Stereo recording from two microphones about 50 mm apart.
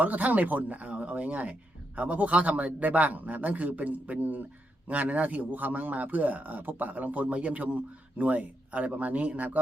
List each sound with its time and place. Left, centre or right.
0.0 s a man's voice: right